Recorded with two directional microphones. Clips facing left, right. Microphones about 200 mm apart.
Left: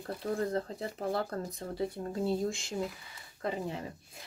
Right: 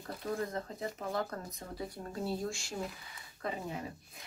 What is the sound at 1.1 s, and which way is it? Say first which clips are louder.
Speech: left 5 dB; 35° left (ahead or behind).